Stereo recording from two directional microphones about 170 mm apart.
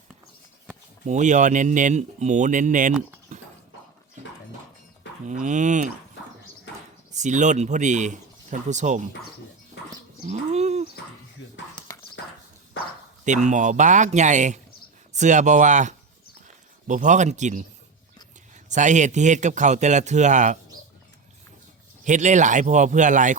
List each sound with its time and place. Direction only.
1.0 s speech: 45° right (ahead or behind)
3.3 s clip-clop: 45° right (ahead or behind)
5.2 s speech: 45° right (ahead or behind)
7.1 s speech: 45° right (ahead or behind)
10.2 s bird: 40° right (ahead or behind)
11.9 s horse: 20° left (ahead or behind)
13.2 s speech: 45° right (ahead or behind)
18.7 s speech: 45° right (ahead or behind)
22.0 s speech: 45° right (ahead or behind)